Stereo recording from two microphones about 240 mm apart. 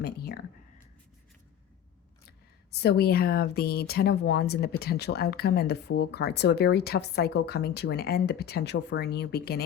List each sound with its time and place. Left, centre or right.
2.8 s speech: left